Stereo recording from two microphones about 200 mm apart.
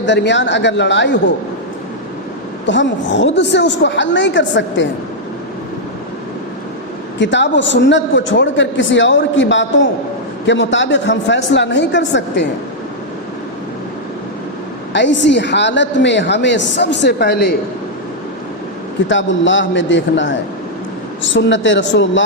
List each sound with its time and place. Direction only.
0.0 s a man's voice: 60° left (ahead or behind)
2.6 s a man's voice: 65° left (ahead or behind)
7.2 s a man's voice: 60° left (ahead or behind)
14.9 s a man's voice: 65° left (ahead or behind)
19.0 s a man's voice: 65° left (ahead or behind)